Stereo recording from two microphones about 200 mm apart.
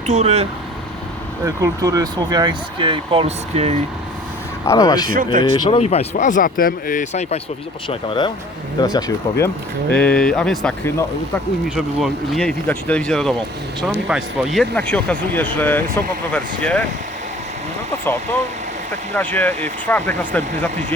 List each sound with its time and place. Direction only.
0.1 s speech: 35° right (ahead or behind)
1.5 s speech: 15° right (ahead or behind); by 3.8 s 35° right (ahead or behind)
4.6 s speech: 15° left (ahead or behind)
5.0 s speech: 45° right (ahead or behind)
5.4 s speech: 20° left (ahead or behind)
7.9 s speech: 25° left (ahead or behind)
9.9 s speech: 5° left (ahead or behind)
18.0 s speech: 10° left (ahead or behind)